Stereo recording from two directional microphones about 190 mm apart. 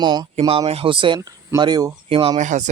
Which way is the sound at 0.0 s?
25° right (ahead or behind).